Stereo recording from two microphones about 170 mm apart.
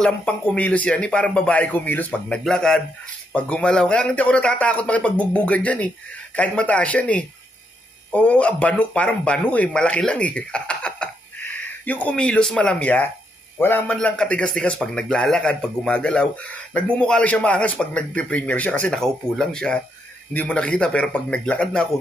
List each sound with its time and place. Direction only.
0.0 s a man's voice: 5° left (ahead or behind)